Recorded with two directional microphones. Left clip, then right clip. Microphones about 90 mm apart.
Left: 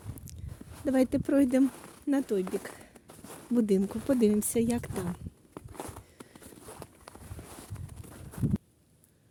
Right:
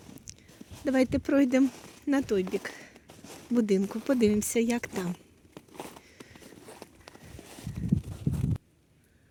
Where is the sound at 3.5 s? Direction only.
35° left (ahead or behind).